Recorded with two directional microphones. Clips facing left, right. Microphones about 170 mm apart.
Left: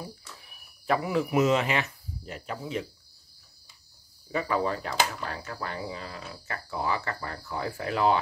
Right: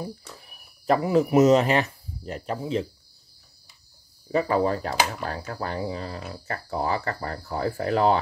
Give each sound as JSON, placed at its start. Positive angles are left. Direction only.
{"t": 0.0, "sound": "speech", "side_deg": -40}
{"t": 4.3, "sound": "speech", "side_deg": -35}